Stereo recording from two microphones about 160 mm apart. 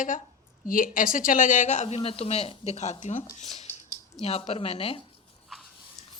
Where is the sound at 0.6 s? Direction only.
60° left (ahead or behind); by 5.0 s 35° left (ahead or behind).